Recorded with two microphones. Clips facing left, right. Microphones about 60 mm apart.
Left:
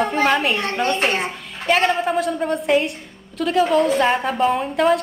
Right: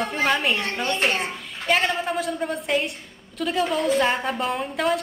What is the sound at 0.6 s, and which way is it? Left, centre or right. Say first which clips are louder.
Speech: left 5 dB; left.